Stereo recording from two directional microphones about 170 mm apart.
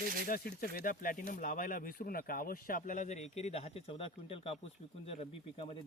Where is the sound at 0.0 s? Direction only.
55° right (ahead or behind).